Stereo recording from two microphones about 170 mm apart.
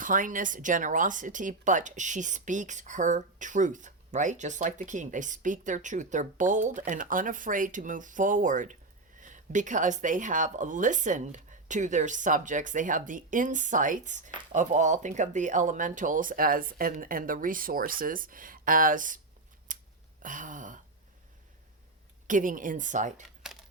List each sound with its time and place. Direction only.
0.0 s speech: 50° right (ahead or behind)
19.7 s scissors: 50° right (ahead or behind)
20.2 s speech: 50° right (ahead or behind)
22.3 s speech: 50° right (ahead or behind)